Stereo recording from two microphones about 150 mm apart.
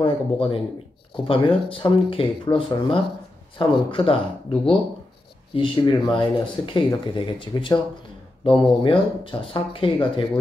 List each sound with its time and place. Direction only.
0.0 s speech: 40° left (ahead or behind)